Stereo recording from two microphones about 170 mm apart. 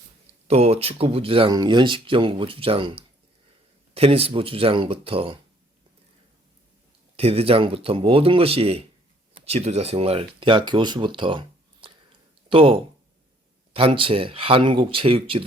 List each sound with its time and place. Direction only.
0.4 s speech: 40° right (ahead or behind)
7.2 s speech: 35° right (ahead or behind)